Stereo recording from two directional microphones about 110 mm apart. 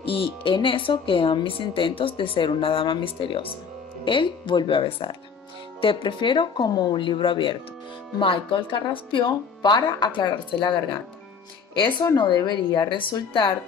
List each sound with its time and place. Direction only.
0.0 s speech: 55° left (ahead or behind)
12.2 s speech: 40° left (ahead or behind)